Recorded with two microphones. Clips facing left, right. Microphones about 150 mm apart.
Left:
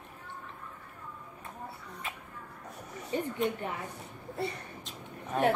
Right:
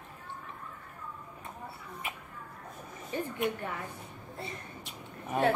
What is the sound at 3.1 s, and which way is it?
Speech, 20° left (ahead or behind).